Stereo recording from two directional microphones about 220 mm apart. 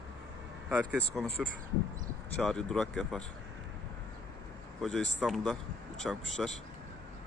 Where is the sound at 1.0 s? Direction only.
5° left (ahead or behind).